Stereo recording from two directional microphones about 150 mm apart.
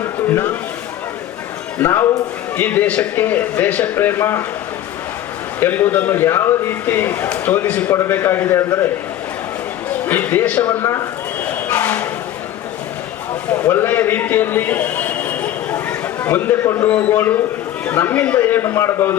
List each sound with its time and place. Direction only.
0.0 s a sound: 15° left (ahead or behind)
1.8 s a man's voice: 20° left (ahead or behind)
5.5 s a man's voice: 15° left (ahead or behind)
10.1 s a man's voice: 10° left (ahead or behind)
11.7 s a sound: 15° left (ahead or behind)
13.5 s a man's voice: 15° left (ahead or behind)